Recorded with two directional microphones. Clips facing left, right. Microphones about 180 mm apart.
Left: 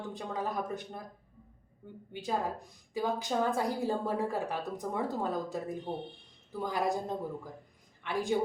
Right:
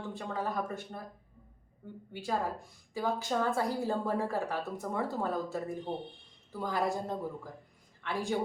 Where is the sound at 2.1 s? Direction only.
20° left (ahead or behind).